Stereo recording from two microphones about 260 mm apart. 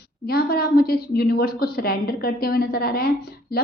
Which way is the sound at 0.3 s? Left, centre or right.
Left.